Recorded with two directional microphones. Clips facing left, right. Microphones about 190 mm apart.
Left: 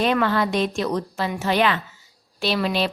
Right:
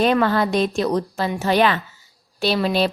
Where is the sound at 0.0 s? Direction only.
40° right (ahead or behind).